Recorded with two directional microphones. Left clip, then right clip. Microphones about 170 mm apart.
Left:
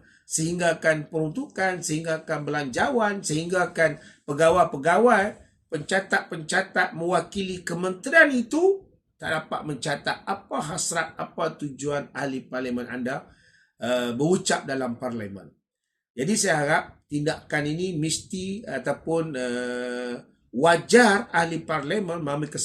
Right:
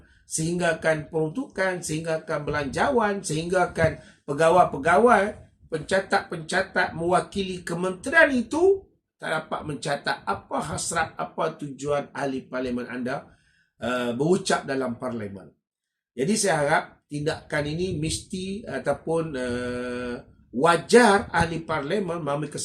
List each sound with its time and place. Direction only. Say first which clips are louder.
0.3 s speech: left 1 dB; 5° left (ahead or behind)